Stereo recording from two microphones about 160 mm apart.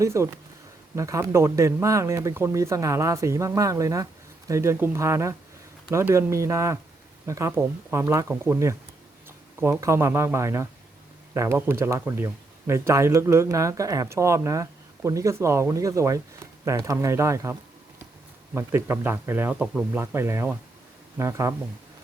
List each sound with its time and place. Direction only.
0.0 s speech: 15° right (ahead or behind)